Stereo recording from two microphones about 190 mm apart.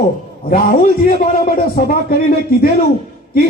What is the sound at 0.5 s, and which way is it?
A man's voice, 50° left (ahead or behind).